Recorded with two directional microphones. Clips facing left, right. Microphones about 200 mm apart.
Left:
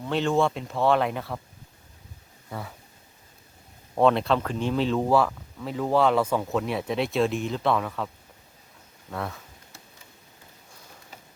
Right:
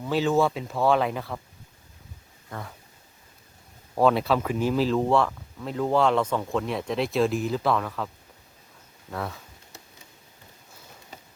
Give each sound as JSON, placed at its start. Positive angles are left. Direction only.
{"t": 0.0, "sound": "speech", "side_deg": -5}
{"t": 2.5, "sound": "speech", "side_deg": 5}
{"t": 3.9, "sound": "speech", "side_deg": -5}